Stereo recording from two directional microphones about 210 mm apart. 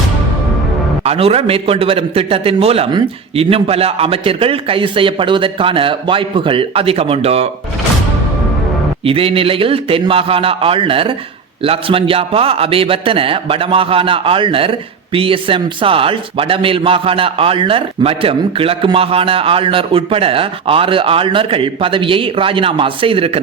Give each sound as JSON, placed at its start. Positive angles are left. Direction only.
{"t": 1.0, "sound": "a man's voice", "side_deg": -30}
{"t": 9.0, "sound": "a man's voice", "side_deg": -25}